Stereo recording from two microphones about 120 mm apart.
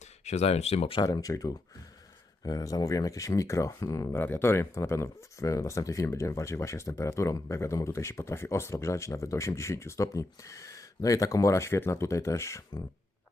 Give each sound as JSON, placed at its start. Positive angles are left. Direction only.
{"t": 0.3, "sound": "speech", "side_deg": 65}
{"t": 1.0, "sound": "speech", "side_deg": 30}